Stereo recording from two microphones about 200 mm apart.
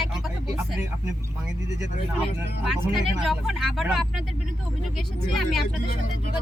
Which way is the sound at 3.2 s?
Centre (ahead or behind).